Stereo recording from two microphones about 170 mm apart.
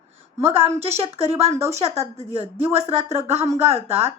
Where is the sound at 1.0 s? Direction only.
35° right (ahead or behind).